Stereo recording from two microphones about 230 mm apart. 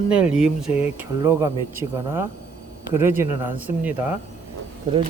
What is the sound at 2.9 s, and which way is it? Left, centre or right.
Speech, centre.